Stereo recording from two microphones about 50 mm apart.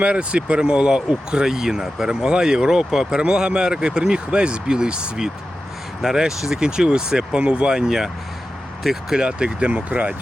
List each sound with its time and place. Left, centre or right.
0.0 s speech: right; by 9.1 s centre
9.1 s speech: centre